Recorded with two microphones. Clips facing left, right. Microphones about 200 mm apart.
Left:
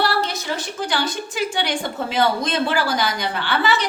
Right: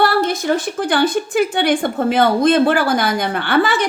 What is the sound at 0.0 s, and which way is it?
A woman's voice, 50° right (ahead or behind).